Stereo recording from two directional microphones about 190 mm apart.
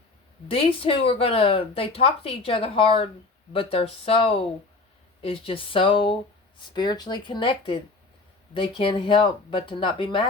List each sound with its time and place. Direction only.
0.5 s speech: 30° left (ahead or behind)